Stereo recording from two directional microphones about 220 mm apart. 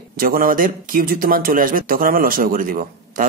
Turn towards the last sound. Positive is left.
turn(degrees=-40)  # may be behind; listen again after turning